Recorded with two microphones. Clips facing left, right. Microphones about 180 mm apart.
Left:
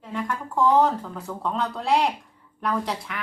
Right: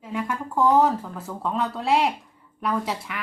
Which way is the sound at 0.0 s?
5° right (ahead or behind).